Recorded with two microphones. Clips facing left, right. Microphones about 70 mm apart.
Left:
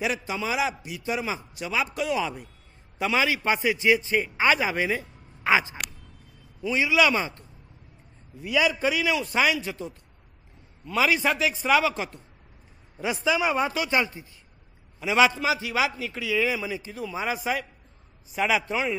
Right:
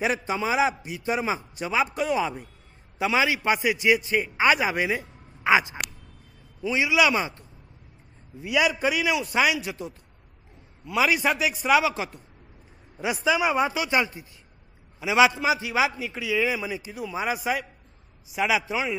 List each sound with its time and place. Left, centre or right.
0.0 s a man's voice: right; by 18.9 s centre